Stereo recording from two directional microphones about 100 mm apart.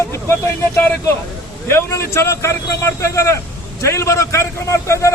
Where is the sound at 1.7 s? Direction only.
25° left (ahead or behind).